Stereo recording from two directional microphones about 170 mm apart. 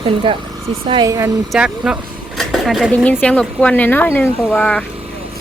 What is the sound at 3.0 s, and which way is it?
Speech, 10° left (ahead or behind).